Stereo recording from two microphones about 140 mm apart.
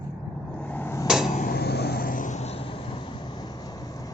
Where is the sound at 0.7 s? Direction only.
15° left (ahead or behind).